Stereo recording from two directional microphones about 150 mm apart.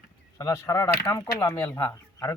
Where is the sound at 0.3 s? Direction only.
20° left (ahead or behind).